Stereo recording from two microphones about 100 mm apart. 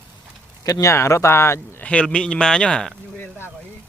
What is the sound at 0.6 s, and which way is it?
Speech, 35° left (ahead or behind).